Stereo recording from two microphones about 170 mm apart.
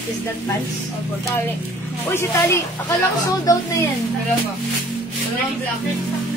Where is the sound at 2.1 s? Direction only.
15° left (ahead or behind).